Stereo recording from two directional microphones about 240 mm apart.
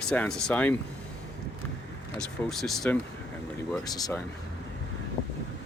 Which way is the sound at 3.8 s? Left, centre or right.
Centre.